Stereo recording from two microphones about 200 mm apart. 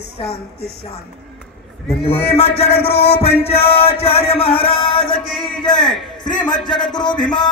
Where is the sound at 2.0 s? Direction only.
30° left (ahead or behind).